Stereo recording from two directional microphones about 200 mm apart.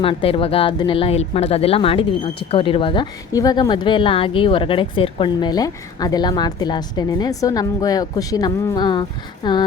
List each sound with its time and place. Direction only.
0.0 s a woman's voice: 25° left (ahead or behind)